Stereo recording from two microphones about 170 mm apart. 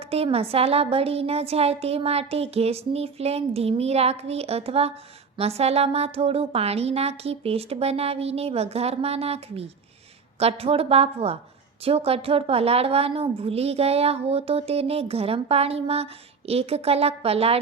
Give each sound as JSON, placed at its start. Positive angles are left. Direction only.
{"t": 0.0, "sound": "a woman's voice", "side_deg": -35}